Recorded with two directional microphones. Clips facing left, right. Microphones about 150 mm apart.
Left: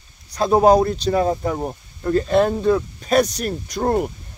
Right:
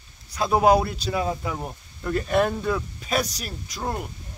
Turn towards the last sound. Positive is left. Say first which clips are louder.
# left 10 dB
turn(degrees=50)  # may be behind; listen again after turning